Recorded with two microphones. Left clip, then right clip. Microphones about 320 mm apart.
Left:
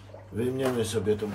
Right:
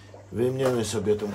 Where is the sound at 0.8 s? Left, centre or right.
Right.